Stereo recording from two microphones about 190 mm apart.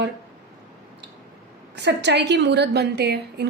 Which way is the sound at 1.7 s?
65° right (ahead or behind).